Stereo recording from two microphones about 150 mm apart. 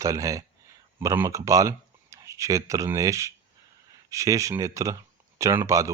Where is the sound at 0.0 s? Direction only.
20° right (ahead or behind).